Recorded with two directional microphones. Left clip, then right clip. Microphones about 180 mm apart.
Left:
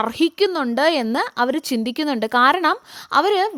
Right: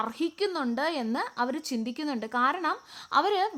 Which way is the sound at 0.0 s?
45° left (ahead or behind).